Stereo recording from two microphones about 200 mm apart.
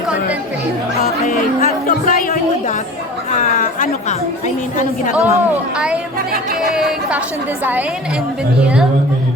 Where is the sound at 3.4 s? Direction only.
40° left (ahead or behind).